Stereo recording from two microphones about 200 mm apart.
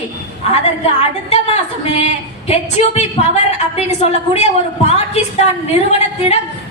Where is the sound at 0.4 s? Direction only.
30° left (ahead or behind).